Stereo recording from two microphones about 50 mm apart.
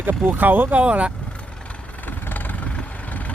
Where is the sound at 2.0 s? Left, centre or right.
Left.